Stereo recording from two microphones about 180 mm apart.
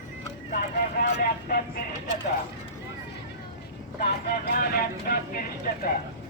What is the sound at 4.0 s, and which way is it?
Speech, 60° left (ahead or behind).